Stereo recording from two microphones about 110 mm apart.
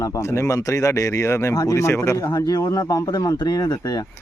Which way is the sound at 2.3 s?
40° left (ahead or behind).